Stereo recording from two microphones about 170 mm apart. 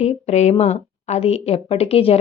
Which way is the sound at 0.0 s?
40° left (ahead or behind).